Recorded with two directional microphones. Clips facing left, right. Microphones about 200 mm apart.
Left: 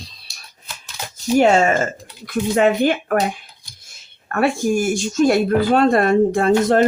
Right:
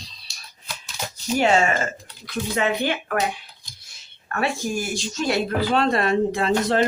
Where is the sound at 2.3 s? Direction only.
50° left (ahead or behind).